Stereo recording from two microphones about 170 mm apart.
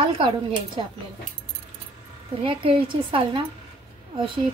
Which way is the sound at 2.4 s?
30° right (ahead or behind).